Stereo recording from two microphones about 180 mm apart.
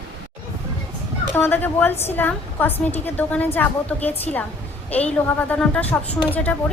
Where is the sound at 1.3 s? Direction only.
10° left (ahead or behind).